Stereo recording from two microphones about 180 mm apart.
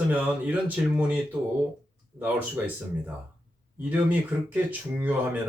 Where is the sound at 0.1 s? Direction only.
10° right (ahead or behind).